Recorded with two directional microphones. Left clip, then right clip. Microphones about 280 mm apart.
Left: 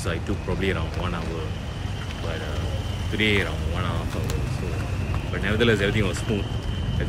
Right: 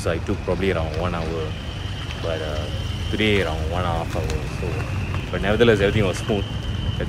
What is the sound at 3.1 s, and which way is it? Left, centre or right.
Speech, centre.